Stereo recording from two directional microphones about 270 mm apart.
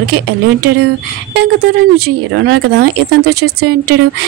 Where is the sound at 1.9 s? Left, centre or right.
Right.